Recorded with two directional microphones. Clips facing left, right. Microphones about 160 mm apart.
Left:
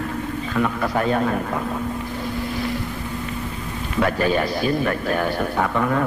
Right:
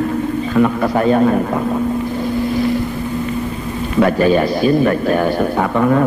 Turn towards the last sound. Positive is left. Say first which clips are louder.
# right 7 dB
turn(degrees=-30)  # may be behind; listen again after turning